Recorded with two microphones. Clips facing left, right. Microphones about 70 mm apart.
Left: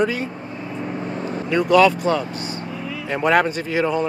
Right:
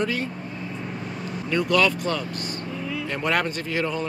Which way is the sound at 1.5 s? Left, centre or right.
Centre.